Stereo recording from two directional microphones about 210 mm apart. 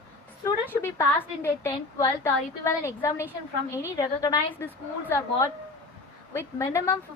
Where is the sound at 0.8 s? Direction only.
15° left (ahead or behind).